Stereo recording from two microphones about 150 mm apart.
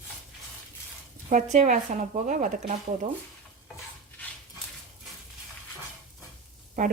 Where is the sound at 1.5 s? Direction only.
55° right (ahead or behind).